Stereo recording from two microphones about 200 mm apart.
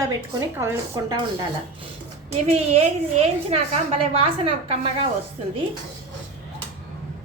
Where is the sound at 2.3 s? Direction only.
30° right (ahead or behind).